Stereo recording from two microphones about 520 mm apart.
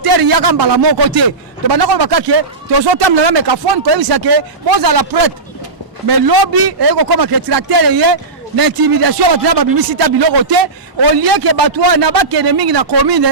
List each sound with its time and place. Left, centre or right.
0.0 s a man's voice: right